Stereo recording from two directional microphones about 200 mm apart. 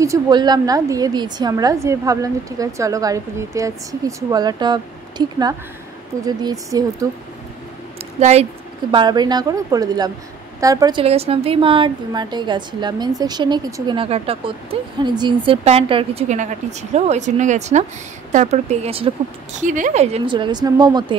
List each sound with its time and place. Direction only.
0.0 s a woman's voice: 20° right (ahead or behind)
8.2 s speech: 35° right (ahead or behind)
8.9 s a woman's voice: 20° right (ahead or behind)